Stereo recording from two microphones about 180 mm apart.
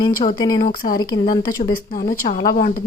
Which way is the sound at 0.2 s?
20° left (ahead or behind).